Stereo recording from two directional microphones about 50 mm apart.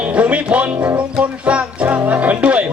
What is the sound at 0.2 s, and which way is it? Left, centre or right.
Music, right.